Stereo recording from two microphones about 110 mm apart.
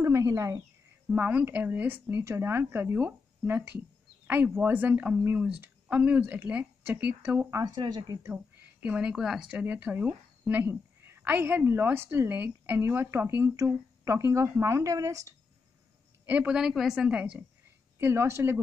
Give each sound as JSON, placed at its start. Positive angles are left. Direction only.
{"t": 0.0, "sound": "a sound", "side_deg": -25}
{"t": 1.1, "sound": "a woman's voice", "side_deg": -15}
{"t": 7.5, "sound": "speech", "side_deg": -40}
{"t": 8.2, "sound": "speech", "side_deg": -15}
{"t": 16.3, "sound": "a woman's voice", "side_deg": -10}
{"t": 17.9, "sound": "speech", "side_deg": -25}